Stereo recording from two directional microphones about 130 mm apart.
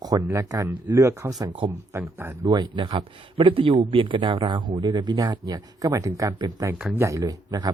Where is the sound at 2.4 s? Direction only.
35° right (ahead or behind).